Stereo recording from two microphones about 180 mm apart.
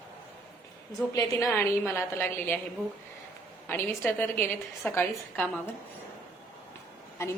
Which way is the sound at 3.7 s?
10° left (ahead or behind).